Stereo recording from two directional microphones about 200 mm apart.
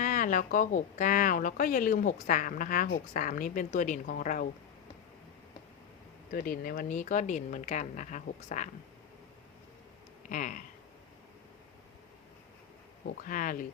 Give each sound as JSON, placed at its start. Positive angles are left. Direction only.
{"t": 0.0, "sound": "a woman's voice", "side_deg": 40}
{"t": 6.3, "sound": "a woman's voice", "side_deg": 45}
{"t": 10.2, "sound": "a woman's voice", "side_deg": 40}
{"t": 13.2, "sound": "speech", "side_deg": 45}